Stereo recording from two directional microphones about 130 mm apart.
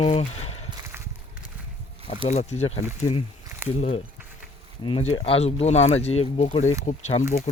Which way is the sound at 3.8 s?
55° left (ahead or behind).